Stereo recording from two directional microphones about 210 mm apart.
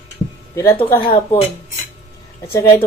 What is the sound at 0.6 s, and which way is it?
Speech, 10° left (ahead or behind).